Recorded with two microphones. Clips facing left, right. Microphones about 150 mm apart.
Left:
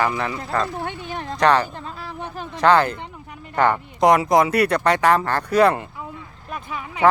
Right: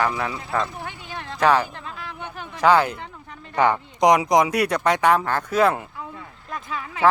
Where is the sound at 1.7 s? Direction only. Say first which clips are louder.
Left 3 dB; 35° left (ahead or behind).